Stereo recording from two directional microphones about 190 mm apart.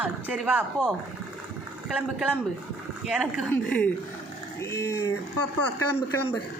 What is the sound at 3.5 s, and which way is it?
Speech, 5° left (ahead or behind).